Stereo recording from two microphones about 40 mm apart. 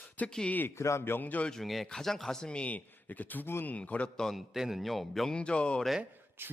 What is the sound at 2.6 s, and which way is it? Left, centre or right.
Speech, left.